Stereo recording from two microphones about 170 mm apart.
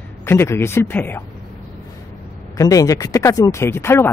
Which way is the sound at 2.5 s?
20° left (ahead or behind).